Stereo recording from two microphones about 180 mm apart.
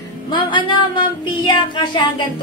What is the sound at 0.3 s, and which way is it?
Music, 25° left (ahead or behind).